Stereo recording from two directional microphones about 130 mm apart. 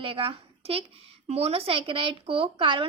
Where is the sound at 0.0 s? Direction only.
45° right (ahead or behind).